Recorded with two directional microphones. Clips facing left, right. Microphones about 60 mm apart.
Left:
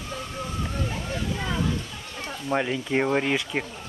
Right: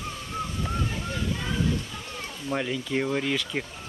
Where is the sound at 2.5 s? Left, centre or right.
Centre.